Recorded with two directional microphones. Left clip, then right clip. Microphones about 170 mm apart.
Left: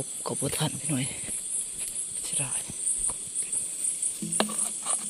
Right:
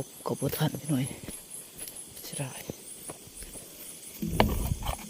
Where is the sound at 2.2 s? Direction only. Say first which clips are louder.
Left 3 dB; 25° right (ahead or behind).